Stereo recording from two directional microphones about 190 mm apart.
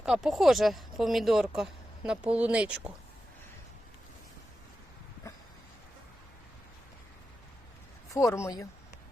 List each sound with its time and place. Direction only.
0.0 s speech: 5° right (ahead or behind)
8.1 s speech: 15° left (ahead or behind)